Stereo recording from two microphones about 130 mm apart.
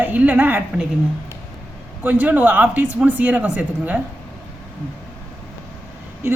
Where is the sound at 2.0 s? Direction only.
10° right (ahead or behind).